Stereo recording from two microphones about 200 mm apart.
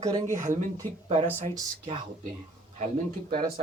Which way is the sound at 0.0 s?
15° right (ahead or behind).